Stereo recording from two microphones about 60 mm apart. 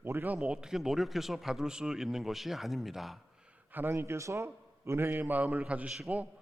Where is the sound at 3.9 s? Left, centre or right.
Right.